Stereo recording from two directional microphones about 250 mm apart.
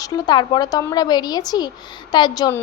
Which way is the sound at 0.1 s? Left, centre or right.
Centre.